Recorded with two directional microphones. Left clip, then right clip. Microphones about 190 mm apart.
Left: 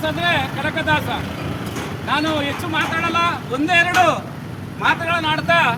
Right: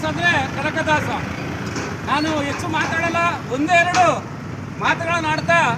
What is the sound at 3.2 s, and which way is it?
Speech, centre (ahead or behind).